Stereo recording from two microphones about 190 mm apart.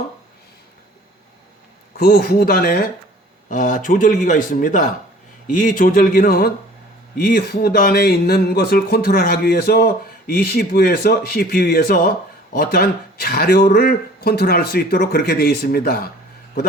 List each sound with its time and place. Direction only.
2.0 s speech: 55° left (ahead or behind)